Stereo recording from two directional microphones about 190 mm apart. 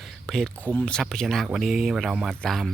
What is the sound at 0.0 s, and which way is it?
Speech, centre (ahead or behind).